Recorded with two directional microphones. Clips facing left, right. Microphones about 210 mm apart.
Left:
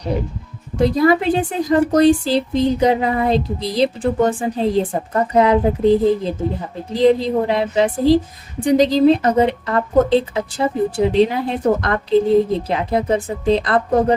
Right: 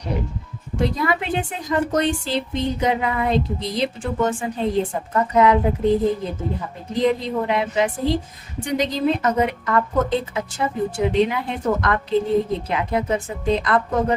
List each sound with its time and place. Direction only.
0.9 s speech: 35° left (ahead or behind)